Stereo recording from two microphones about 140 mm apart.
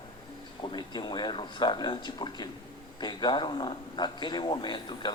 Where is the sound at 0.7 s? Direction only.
35° left (ahead or behind).